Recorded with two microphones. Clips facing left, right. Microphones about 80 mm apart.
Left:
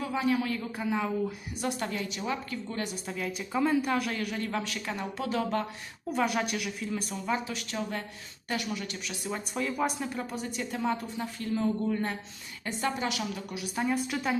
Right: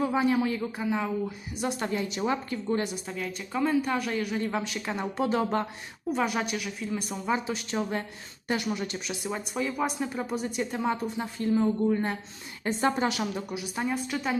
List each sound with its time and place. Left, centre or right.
0.0 s a woman's voice: right
2.0 s a woman's voice: right
3.1 s a woman's voice: centre
4.4 s a woman's voice: centre
5.1 s a woman's voice: right
6.1 s a woman's voice: centre; by 9.1 s right
9.2 s a woman's voice: centre
12.6 s a woman's voice: right
13.6 s a woman's voice: centre